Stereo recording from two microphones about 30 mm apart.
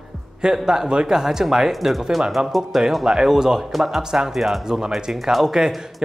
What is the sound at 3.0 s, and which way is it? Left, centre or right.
Speech, centre.